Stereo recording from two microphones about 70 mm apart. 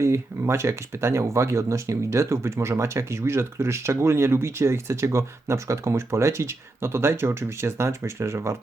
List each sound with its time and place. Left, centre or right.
0.0 s speech: right